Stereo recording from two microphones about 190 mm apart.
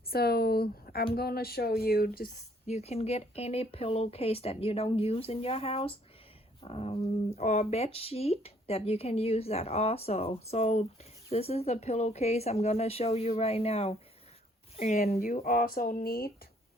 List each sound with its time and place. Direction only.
0.1 s speech: 55° left (ahead or behind)
2.6 s speech: 35° left (ahead or behind); by 16.3 s 50° left (ahead or behind)